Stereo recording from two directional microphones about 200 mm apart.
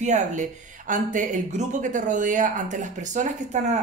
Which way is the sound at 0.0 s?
40° right (ahead or behind).